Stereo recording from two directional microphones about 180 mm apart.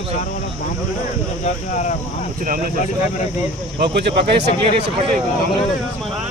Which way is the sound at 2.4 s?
50° right (ahead or behind).